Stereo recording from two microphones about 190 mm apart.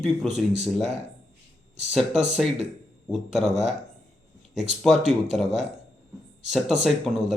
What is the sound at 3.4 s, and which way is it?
Speech, 35° right (ahead or behind).